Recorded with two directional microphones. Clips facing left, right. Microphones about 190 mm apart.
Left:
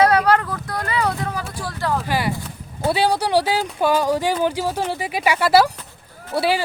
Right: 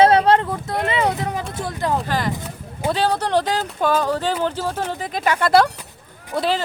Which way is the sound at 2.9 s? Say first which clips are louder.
Left 1 dB; 10° left (ahead or behind).